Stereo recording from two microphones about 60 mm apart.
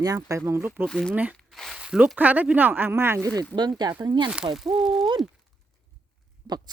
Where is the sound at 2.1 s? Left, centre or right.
Right.